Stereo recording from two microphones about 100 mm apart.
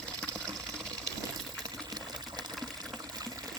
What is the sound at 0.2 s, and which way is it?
Water, 10° left (ahead or behind).